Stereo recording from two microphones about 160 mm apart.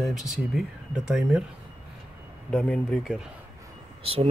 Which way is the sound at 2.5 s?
5° left (ahead or behind).